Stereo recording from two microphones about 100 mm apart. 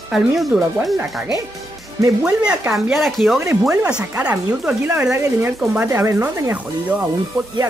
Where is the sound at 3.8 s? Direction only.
10° right (ahead or behind).